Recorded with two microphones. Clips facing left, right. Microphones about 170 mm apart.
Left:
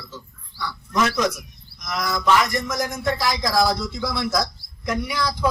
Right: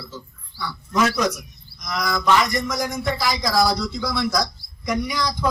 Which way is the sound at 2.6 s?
20° right (ahead or behind).